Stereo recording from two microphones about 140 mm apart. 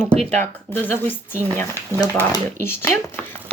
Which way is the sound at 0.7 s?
15° left (ahead or behind).